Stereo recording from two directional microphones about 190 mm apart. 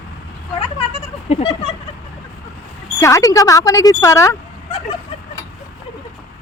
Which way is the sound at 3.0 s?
15° left (ahead or behind).